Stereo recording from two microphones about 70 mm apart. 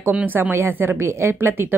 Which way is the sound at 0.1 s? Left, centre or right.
Right.